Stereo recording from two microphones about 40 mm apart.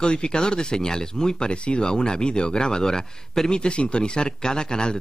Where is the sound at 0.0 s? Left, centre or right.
Left.